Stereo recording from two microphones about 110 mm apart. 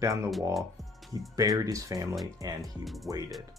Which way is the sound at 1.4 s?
35° right (ahead or behind).